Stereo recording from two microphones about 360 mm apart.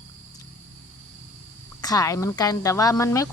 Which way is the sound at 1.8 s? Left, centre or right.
Centre.